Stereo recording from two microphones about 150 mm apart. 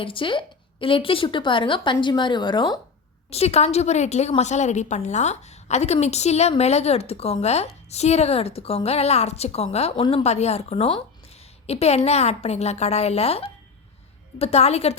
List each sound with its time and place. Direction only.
0.0 s a woman's voice: 35° left (ahead or behind)
3.2 s a woman's voice: 45° left (ahead or behind)
10.2 s a woman's voice: 45° left (ahead or behind)